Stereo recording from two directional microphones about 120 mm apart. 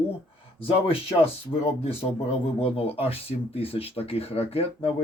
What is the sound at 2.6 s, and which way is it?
Speech, 55° left (ahead or behind).